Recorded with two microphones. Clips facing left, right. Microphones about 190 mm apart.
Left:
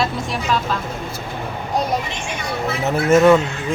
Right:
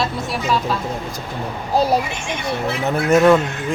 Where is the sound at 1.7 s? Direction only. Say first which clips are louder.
Right 4 dB; 30° right (ahead or behind).